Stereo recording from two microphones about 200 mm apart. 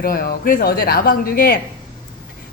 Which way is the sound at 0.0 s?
45° left (ahead or behind).